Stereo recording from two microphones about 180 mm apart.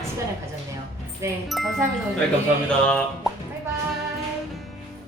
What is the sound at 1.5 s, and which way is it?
Speech, centre (ahead or behind).